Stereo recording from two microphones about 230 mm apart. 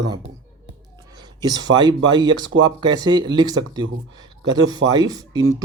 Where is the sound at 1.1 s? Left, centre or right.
Centre.